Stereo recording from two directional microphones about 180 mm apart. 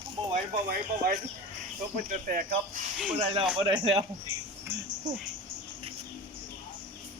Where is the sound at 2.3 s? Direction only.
50° right (ahead or behind).